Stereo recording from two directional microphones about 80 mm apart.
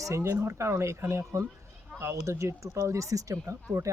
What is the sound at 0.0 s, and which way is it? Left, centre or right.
Speech, right.